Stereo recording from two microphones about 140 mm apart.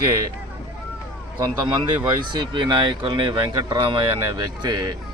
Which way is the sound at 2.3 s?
35° right (ahead or behind).